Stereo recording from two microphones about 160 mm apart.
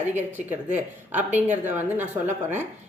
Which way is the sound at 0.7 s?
10° right (ahead or behind).